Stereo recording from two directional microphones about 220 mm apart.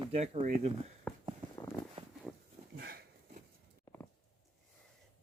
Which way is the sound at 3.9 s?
10° left (ahead or behind).